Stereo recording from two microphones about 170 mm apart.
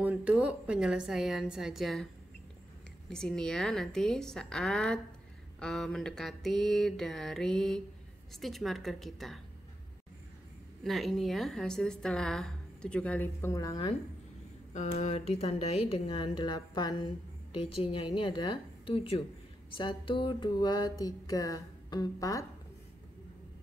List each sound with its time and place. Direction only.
0.0 s a woman's voice: 5° right (ahead or behind)
3.1 s a woman's voice: 5° left (ahead or behind)
10.8 s a woman's voice: centre (ahead or behind); by 13.7 s 15° left (ahead or behind)
14.7 s speech: 40° left (ahead or behind)
19.7 s a sound: 30° left (ahead or behind)